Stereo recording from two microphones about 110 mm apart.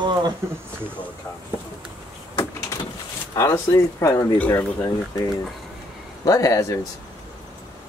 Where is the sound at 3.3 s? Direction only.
25° left (ahead or behind).